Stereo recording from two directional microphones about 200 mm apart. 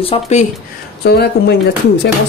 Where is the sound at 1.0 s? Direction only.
55° left (ahead or behind).